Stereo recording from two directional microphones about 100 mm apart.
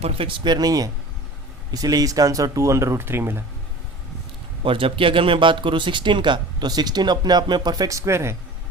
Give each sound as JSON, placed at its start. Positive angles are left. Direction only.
{"t": 0.0, "sound": "speech", "side_deg": -65}
{"t": 4.6, "sound": "speech", "side_deg": -60}